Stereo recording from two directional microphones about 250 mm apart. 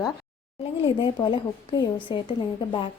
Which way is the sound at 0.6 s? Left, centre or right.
Left.